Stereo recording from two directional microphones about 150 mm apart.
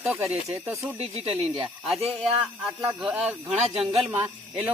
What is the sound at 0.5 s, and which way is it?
Speech, 20° right (ahead or behind).